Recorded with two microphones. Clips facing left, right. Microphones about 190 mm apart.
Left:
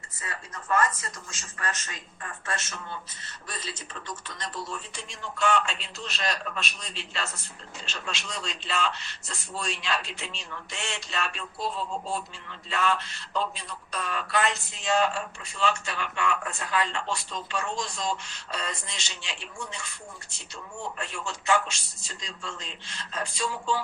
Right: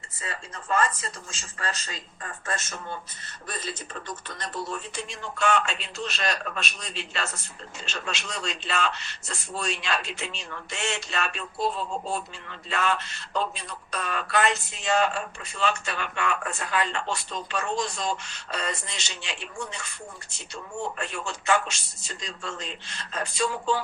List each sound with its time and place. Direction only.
0.2 s speech: 30° right (ahead or behind); by 19.8 s 60° right (ahead or behind)
21.2 s speech: 60° right (ahead or behind)